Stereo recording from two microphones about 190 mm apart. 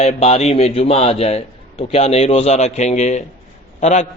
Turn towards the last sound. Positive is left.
turn(degrees=40)  # may be behind; listen again after turning